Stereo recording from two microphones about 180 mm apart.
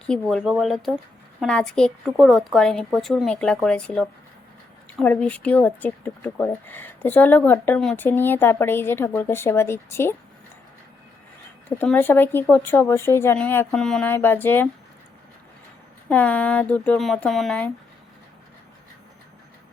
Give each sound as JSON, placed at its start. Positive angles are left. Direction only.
{"t": 0.1, "sound": "a woman's voice", "side_deg": 0}
{"t": 11.8, "sound": "speech", "side_deg": 10}
{"t": 16.0, "sound": "speech", "side_deg": 10}